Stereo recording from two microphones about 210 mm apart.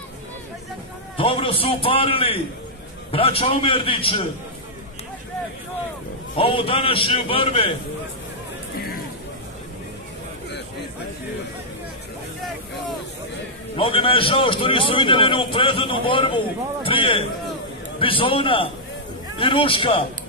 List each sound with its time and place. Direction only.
1.1 s a man's voice: 25° left (ahead or behind)
6.3 s a man's voice: 25° left (ahead or behind)
8.7 s hubbub: 45° left (ahead or behind)
13.7 s a man's voice: 25° left (ahead or behind)